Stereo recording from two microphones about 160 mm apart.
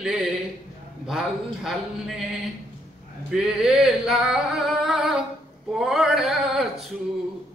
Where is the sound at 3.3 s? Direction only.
5° right (ahead or behind).